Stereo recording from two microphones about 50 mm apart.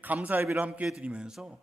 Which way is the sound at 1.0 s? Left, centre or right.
Centre.